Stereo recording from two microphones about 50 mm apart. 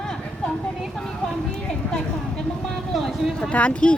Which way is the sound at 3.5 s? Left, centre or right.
Left.